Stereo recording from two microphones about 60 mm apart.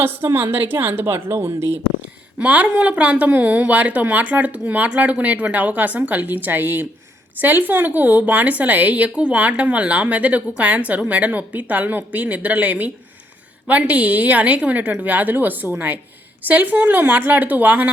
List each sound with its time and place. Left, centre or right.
0.3 s a woman's voice: right
2.4 s a woman's voice: right